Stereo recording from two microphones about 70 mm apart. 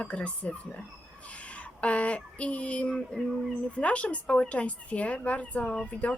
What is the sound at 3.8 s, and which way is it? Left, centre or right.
Speech, centre.